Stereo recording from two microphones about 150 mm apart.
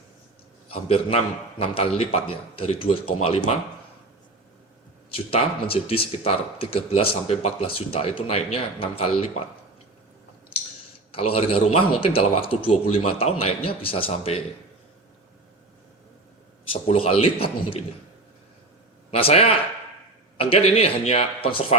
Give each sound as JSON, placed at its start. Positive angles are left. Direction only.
{"t": 0.7, "sound": "speech", "side_deg": 40}
{"t": 5.1, "sound": "speech", "side_deg": 40}
{"t": 11.1, "sound": "speech", "side_deg": 40}
{"t": 16.7, "sound": "speech", "side_deg": 40}
{"t": 19.1, "sound": "speech", "side_deg": 40}